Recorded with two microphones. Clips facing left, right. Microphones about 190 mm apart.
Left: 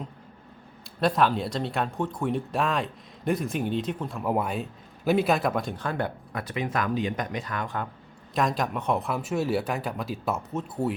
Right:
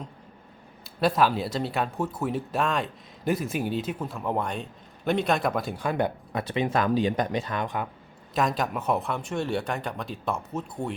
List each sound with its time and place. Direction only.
1.0 s speech: 5° right (ahead or behind)
4.2 s speech: 5° left (ahead or behind); by 6.1 s 15° right (ahead or behind)
6.3 s speech: 25° right (ahead or behind)
8.4 s speech: centre (ahead or behind)